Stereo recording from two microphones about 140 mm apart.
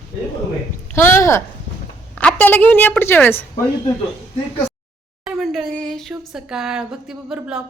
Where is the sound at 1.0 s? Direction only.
20° left (ahead or behind).